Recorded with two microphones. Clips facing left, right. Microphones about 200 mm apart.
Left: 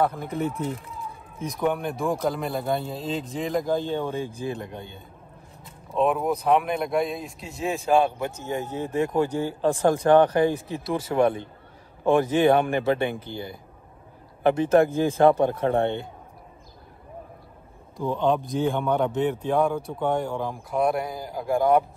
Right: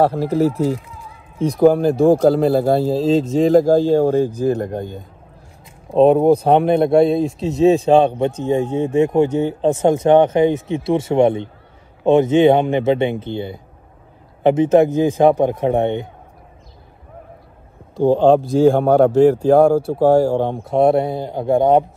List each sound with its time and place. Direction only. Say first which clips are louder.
0.0 s a man's voice: right 10 dB; 30° right (ahead or behind)
5.9 s a man's voice: right 12 dB; 30° right (ahead or behind)
17.9 s a man's voice: right 11 dB; 30° right (ahead or behind)